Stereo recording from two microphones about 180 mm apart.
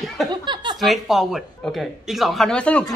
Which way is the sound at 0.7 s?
Centre (ahead or behind).